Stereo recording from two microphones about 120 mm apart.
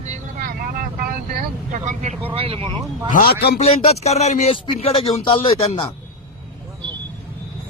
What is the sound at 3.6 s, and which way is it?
Speech, 60° left (ahead or behind).